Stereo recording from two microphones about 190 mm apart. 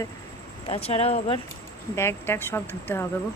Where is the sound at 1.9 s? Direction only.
15° left (ahead or behind).